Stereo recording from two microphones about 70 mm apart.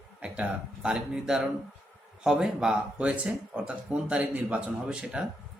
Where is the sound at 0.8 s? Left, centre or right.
Centre.